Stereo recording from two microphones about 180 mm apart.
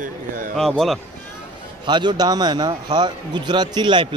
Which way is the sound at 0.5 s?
Centre (ahead or behind).